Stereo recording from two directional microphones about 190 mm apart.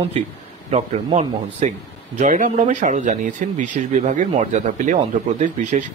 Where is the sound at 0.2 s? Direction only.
40° right (ahead or behind).